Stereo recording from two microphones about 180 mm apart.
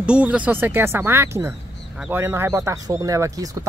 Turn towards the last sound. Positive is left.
turn(degrees=-20)  # may be behind; listen again after turning